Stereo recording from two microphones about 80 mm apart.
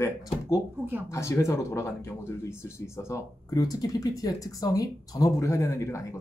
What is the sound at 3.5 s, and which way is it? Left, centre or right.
Speech, left.